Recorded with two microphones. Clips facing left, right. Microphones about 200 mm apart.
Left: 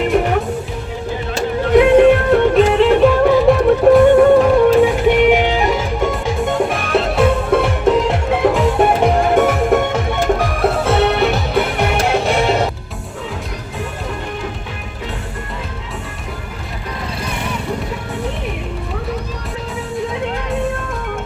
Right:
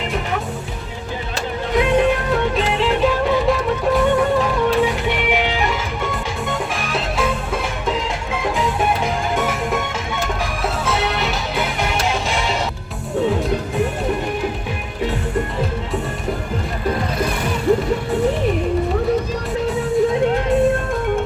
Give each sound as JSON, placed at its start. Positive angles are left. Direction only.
{"t": 0.0, "sound": "music", "side_deg": 55}
{"t": 1.7, "sound": "music", "side_deg": 60}
{"t": 6.4, "sound": "music", "side_deg": 60}